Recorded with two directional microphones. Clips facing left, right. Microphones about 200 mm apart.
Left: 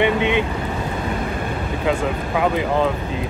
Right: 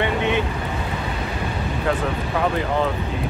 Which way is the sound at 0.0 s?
15° left (ahead or behind).